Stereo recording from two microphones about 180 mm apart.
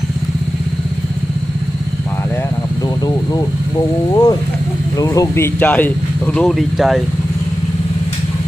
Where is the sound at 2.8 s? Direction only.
20° left (ahead or behind).